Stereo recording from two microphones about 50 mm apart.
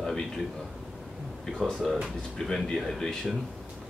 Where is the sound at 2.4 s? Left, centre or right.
Centre.